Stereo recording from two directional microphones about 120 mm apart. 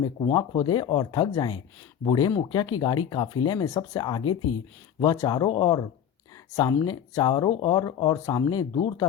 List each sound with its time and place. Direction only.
0.2 s speech: 35° left (ahead or behind)